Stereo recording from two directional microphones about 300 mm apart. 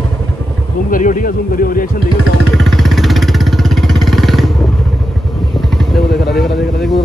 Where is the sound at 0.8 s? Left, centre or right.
Left.